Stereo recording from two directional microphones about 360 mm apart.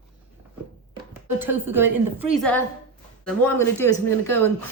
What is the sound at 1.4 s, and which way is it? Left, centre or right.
Speech, centre.